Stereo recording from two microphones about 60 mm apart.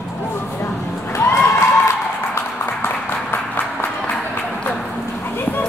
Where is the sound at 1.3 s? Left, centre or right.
Left.